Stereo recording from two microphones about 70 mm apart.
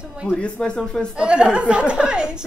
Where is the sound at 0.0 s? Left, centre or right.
Centre.